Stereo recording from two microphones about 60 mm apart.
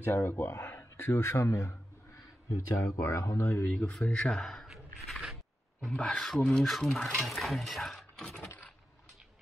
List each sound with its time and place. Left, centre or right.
0.0 s speech: left
0.7 s a sound: left
1.1 s a man's voice: left
3.7 s speech: centre
4.6 s a sound: centre
5.9 s speech: centre